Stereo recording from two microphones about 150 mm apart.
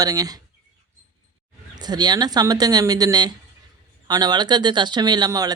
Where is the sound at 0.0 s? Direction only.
25° right (ahead or behind).